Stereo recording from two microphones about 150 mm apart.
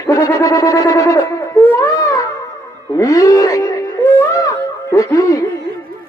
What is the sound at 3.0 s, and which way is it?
Speech, 25° left (ahead or behind).